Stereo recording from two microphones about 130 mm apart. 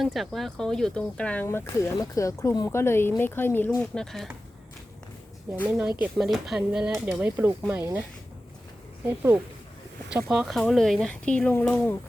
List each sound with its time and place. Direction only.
0.0 s speech: centre (ahead or behind)
1.5 s speech: 20° left (ahead or behind)
3.8 s speech: 5° left (ahead or behind)
5.6 s speech: 10° right (ahead or behind)
9.0 s speech: 20° right (ahead or behind)
10.1 s speech: 5° right (ahead or behind); by 11.9 s 10° left (ahead or behind)